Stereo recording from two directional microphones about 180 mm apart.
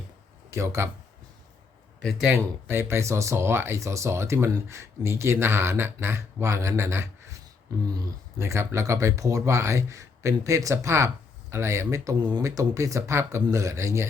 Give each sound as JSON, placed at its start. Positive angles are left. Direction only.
{"t": 0.5, "sound": "speech", "side_deg": -15}
{"t": 2.0, "sound": "speech", "side_deg": 0}
{"t": 2.3, "sound": "speech", "side_deg": -15}